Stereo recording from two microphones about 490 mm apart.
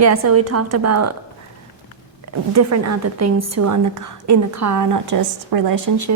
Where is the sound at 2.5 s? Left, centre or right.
Right.